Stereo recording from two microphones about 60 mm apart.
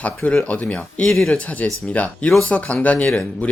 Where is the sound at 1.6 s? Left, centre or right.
Left.